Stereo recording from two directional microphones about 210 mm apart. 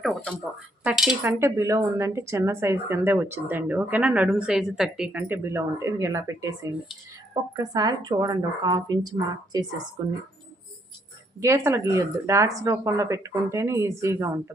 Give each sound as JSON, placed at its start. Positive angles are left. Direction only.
{"t": 0.0, "sound": "a sound", "side_deg": 0}
{"t": 0.9, "sound": "speech", "side_deg": -5}
{"t": 11.3, "sound": "speech", "side_deg": -15}